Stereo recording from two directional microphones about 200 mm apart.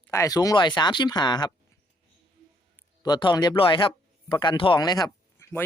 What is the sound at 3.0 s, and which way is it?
Speech, 20° left (ahead or behind).